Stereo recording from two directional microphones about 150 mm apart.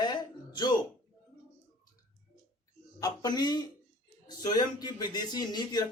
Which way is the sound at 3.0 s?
25° left (ahead or behind).